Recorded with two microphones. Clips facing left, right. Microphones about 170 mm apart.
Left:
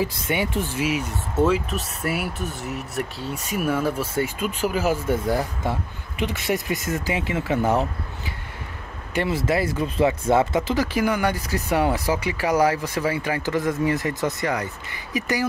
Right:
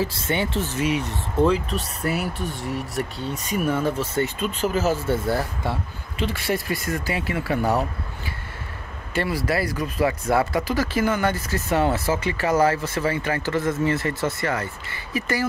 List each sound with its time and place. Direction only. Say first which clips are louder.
0.0 s speech: even; 10° left (ahead or behind)
9.1 s speech: left 1 dB; 15° left (ahead or behind)